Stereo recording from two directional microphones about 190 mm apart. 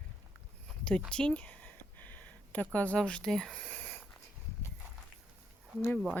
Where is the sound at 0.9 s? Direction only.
5° left (ahead or behind).